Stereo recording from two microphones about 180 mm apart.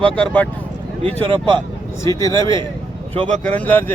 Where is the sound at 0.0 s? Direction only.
5° left (ahead or behind).